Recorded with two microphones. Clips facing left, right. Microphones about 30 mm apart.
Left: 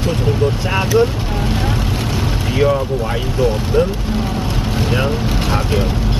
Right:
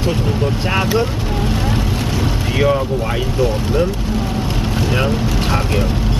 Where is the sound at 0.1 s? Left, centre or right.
Centre.